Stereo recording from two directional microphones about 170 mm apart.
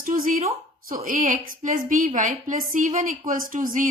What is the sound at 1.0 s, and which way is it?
A woman's voice, 50° right (ahead or behind).